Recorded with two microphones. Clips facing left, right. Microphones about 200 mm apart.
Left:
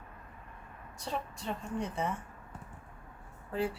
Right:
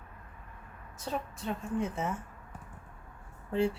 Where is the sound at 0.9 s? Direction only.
Centre (ahead or behind).